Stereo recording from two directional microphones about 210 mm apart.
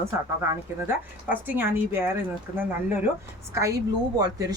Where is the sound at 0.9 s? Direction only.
10° right (ahead or behind).